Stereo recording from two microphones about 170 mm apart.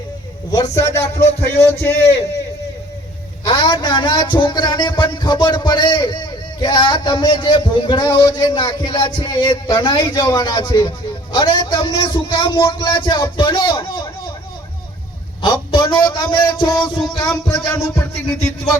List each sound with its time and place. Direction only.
0.5 s a man's voice: 20° left (ahead or behind)
3.4 s a man's voice: 25° left (ahead or behind)
15.4 s a man's voice: 30° left (ahead or behind)